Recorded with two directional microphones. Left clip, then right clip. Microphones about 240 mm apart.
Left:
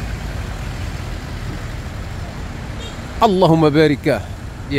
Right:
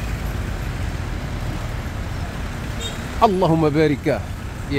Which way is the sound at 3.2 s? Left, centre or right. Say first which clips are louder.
Left 4 dB; centre.